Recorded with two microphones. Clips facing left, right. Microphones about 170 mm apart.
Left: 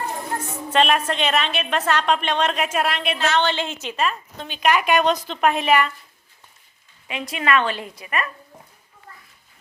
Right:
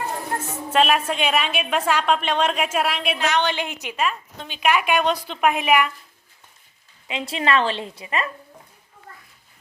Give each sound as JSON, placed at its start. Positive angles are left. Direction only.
{"t": 0.7, "sound": "a woman's voice", "side_deg": -5}
{"t": 7.1, "sound": "a woman's voice", "side_deg": -25}